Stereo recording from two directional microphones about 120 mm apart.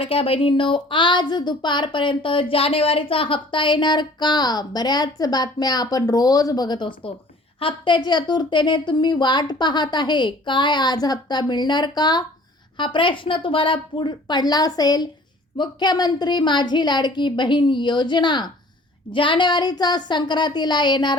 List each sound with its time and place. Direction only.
0.0 s speech: 50° left (ahead or behind)